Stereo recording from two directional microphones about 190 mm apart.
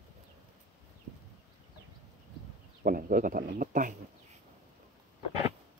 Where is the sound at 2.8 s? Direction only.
45° right (ahead or behind).